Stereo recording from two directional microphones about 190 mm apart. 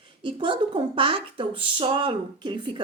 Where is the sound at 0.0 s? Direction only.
25° right (ahead or behind).